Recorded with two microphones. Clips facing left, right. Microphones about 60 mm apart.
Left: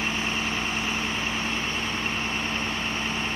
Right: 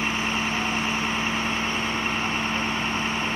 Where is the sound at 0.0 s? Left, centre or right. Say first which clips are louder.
Right 2 dB; centre.